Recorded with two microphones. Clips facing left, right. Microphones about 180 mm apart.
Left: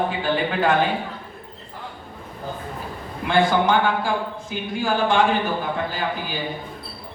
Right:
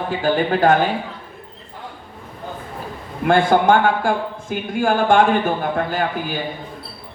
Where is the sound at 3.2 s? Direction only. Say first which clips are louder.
Right 4 dB; 50° right (ahead or behind).